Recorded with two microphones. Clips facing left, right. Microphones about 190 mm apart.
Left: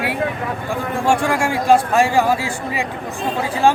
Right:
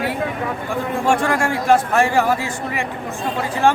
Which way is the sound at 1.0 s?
10° left (ahead or behind).